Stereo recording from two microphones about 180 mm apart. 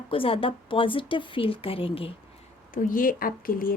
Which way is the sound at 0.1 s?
30° left (ahead or behind).